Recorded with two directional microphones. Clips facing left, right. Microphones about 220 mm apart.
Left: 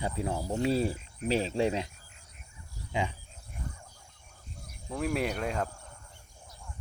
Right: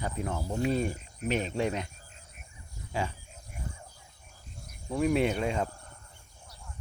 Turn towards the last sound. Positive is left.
turn(degrees=0)  # may be behind; listen again after turning